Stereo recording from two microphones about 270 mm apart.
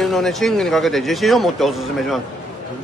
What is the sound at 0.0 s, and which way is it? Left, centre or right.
Speech, centre.